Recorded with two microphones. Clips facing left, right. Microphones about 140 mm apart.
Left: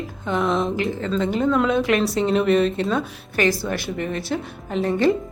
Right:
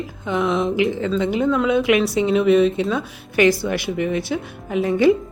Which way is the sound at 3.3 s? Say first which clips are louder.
Right 5 dB; 20° right (ahead or behind).